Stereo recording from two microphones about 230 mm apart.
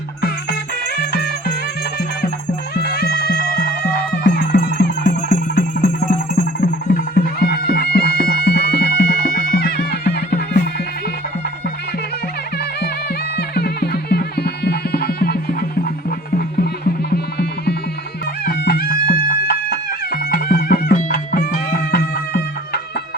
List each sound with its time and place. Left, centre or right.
0.9 s music: left
2.8 s music: left
13.3 s music: left